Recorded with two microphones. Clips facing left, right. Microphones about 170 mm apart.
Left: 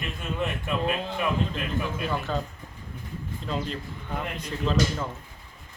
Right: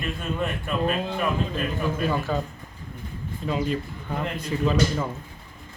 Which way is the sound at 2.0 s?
5° right (ahead or behind).